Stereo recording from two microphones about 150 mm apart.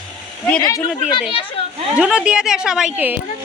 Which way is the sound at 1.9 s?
5° right (ahead or behind).